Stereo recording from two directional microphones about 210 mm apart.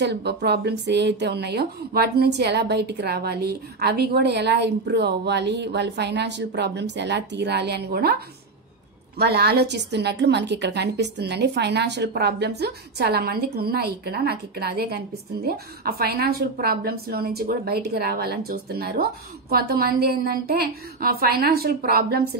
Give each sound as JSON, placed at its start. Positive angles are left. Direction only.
{"t": 0.0, "sound": "speech", "side_deg": -50}
{"t": 9.2, "sound": "speech", "side_deg": -50}